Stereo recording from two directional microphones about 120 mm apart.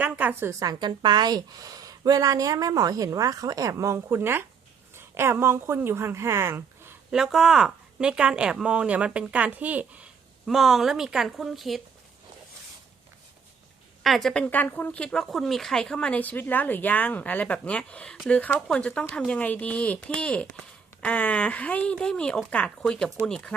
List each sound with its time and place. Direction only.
0.0 s speech: 15° right (ahead or behind)
0.6 s a woman's voice: 35° right (ahead or behind); by 6.9 s 20° right (ahead or behind)
7.1 s speech: 5° right (ahead or behind)
10.4 s a woman's voice: centre (ahead or behind)
14.0 s a woman's voice: centre (ahead or behind)
14.4 s speech: 15° left (ahead or behind)